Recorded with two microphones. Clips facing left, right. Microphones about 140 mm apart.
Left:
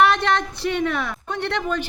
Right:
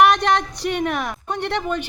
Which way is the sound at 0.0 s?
15° right (ahead or behind).